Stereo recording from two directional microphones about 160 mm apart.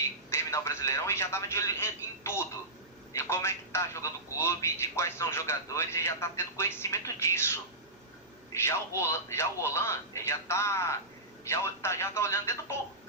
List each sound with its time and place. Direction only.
0.3 s speech: 15° left (ahead or behind)
8.6 s speech: 15° left (ahead or behind)